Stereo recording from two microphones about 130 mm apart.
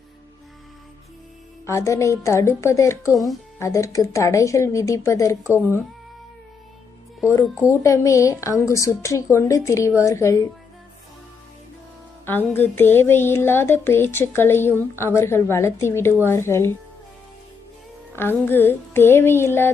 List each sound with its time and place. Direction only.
1.6 s a woman's voice: 20° left (ahead or behind)
5.5 s speech: 15° right (ahead or behind)
7.7 s a woman's voice: 20° left (ahead or behind)
12.2 s a sound: 15° left (ahead or behind)
14.9 s a woman's voice: 20° left (ahead or behind)
18.4 s a sound: 15° left (ahead or behind)